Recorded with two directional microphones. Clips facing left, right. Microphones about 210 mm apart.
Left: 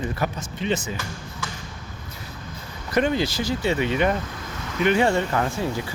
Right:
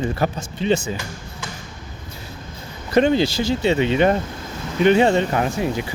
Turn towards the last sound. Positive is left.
turn(degrees=-15)  # may be behind; listen again after turning